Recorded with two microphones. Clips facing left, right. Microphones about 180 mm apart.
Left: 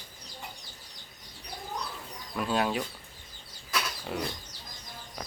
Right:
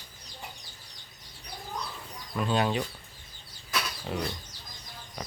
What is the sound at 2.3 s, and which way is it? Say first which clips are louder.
Speech: right 1 dB; 5° left (ahead or behind).